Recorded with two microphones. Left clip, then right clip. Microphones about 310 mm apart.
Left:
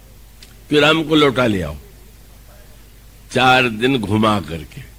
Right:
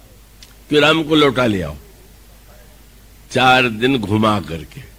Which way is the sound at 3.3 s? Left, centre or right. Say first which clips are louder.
Right 1 dB; right.